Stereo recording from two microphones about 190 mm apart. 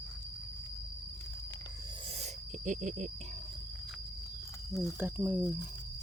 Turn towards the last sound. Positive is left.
turn(degrees=-10)  # may be behind; listen again after turning